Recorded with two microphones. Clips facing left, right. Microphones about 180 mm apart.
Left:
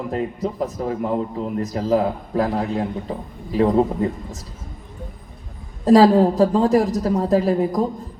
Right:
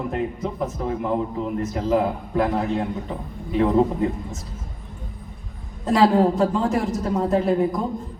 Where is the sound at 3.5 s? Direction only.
35° left (ahead or behind).